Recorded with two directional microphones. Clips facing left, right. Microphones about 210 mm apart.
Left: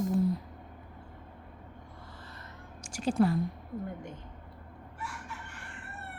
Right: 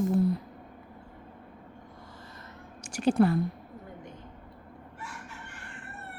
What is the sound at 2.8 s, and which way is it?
Speech, 65° right (ahead or behind).